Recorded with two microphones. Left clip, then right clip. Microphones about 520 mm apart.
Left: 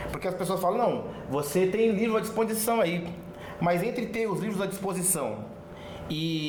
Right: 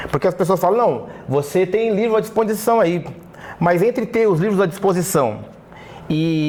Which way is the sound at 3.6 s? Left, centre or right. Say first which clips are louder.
Right 11 dB; right.